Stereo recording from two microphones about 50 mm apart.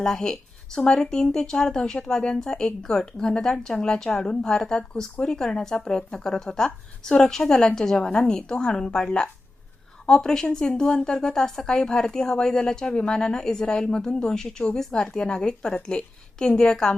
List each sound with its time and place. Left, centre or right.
0.0 s speech: centre